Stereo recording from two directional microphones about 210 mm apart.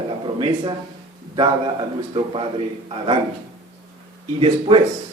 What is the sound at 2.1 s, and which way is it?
Speech, 25° right (ahead or behind).